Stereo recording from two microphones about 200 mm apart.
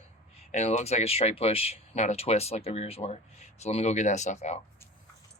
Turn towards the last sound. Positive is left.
turn(degrees=35)  # may be behind; listen again after turning